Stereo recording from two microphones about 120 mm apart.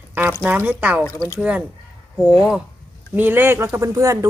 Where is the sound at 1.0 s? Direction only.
15° left (ahead or behind).